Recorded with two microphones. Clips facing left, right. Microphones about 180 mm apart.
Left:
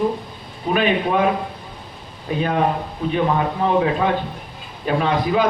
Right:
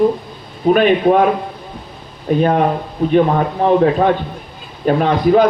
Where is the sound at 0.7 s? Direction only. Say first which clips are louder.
Right 5 dB; 50° right (ahead or behind).